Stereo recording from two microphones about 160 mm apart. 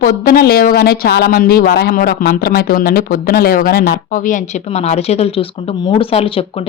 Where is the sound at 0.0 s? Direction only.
70° left (ahead or behind).